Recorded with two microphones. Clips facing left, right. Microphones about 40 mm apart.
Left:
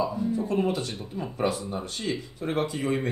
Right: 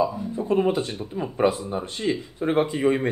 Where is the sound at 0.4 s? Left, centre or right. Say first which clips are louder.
Right 8 dB; right.